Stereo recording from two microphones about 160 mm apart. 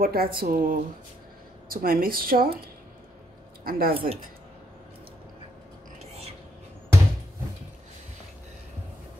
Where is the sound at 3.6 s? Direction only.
65° right (ahead or behind).